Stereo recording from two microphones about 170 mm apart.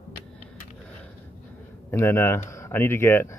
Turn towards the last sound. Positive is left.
turn(degrees=15)  # may be behind; listen again after turning